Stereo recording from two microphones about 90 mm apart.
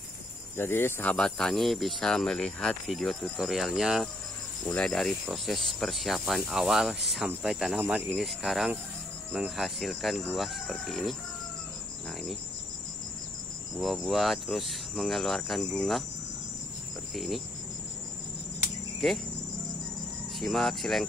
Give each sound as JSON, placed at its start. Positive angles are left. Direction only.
{"t": 0.6, "sound": "speech", "side_deg": 25}
{"t": 1.1, "sound": "speech", "side_deg": 5}
{"t": 7.8, "sound": "speech", "side_deg": -20}
{"t": 8.2, "sound": "speech", "side_deg": 0}
{"t": 12.1, "sound": "cricket", "side_deg": 0}
{"t": 13.7, "sound": "speech", "side_deg": -5}
{"t": 17.1, "sound": "speech", "side_deg": 0}
{"t": 20.3, "sound": "speech", "side_deg": 0}